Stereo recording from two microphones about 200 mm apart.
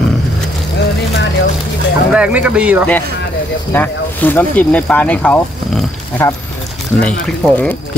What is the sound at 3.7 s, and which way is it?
Speech, 10° left (ahead or behind).